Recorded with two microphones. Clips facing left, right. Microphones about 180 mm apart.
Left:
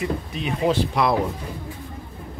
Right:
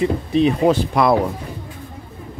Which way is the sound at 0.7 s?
50° right (ahead or behind).